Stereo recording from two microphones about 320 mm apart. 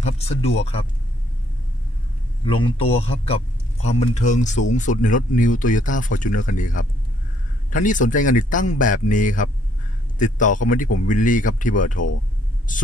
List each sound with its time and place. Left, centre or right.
0.0 s speech: centre
2.4 s a man's voice: centre